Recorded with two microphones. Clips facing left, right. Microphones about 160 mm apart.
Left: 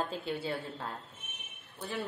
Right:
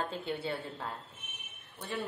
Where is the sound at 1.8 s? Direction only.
Centre (ahead or behind).